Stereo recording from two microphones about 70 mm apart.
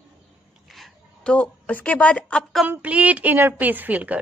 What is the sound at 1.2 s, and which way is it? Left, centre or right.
A woman's voice, centre.